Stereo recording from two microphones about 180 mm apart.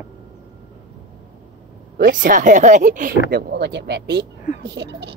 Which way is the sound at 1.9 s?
50° right (ahead or behind).